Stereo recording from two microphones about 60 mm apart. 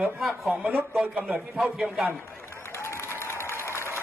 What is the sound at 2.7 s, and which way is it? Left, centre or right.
Applause, left.